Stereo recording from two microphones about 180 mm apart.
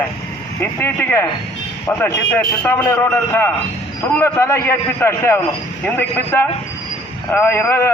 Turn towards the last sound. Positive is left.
turn(degrees=15)  # may be behind; listen again after turning